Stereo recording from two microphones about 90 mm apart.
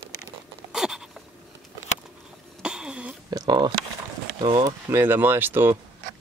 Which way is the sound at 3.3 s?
50° right (ahead or behind).